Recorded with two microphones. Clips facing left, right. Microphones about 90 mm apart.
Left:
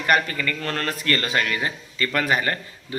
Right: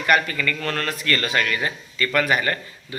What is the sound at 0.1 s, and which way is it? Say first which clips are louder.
A man's voice: right 1 dB; 35° left (ahead or behind).